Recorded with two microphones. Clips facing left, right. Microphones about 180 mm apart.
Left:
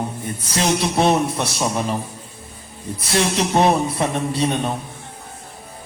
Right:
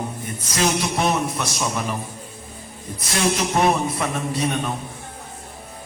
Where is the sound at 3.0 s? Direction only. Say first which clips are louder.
Left 2 dB; 30° left (ahead or behind).